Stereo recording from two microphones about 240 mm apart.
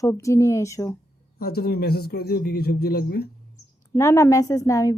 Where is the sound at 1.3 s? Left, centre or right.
Left.